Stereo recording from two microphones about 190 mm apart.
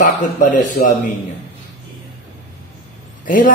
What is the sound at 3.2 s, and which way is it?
Speech, 45° left (ahead or behind).